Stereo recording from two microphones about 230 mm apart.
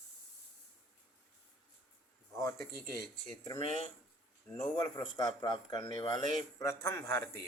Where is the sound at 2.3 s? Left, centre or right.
Centre.